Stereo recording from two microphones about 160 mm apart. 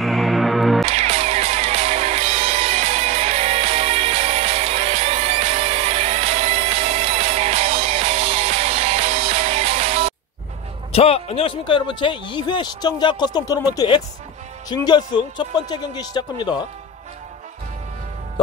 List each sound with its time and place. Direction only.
0.0 s music: centre (ahead or behind)
0.8 s music: 40° right (ahead or behind)
10.9 s speech: 40° left (ahead or behind)